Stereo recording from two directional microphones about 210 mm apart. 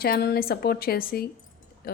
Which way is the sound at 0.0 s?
50° left (ahead or behind).